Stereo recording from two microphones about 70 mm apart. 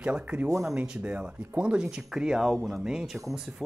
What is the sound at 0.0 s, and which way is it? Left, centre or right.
Speech, centre.